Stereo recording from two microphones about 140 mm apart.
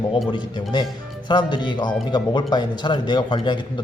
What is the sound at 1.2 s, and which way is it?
A man's voice, 35° left (ahead or behind).